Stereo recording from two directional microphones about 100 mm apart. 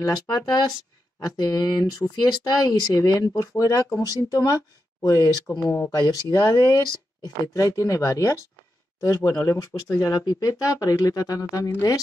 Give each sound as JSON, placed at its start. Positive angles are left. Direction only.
{"t": 0.0, "sound": "speech", "side_deg": 45}